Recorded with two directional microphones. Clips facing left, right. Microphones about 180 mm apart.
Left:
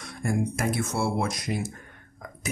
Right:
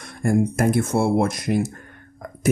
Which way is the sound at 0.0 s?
55° right (ahead or behind).